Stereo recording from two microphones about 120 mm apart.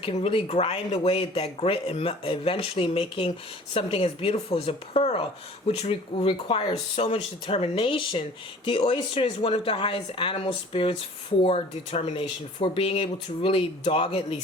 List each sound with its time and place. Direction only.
0.0 s speech: 50° left (ahead or behind)
6.2 s speech: 45° left (ahead or behind)
11.4 s speech: 60° left (ahead or behind)
12.5 s speech: 45° left (ahead or behind)